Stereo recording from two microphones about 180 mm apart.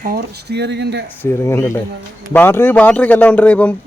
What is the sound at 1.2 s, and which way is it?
Speech, 15° left (ahead or behind).